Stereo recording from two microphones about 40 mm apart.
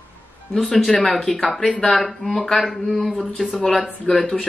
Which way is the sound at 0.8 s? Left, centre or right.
Centre.